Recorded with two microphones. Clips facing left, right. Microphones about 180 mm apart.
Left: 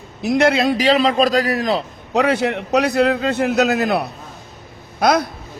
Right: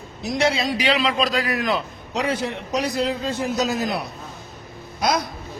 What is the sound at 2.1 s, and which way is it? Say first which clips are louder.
A man's voice: left 7 dB; 70° left (ahead or behind).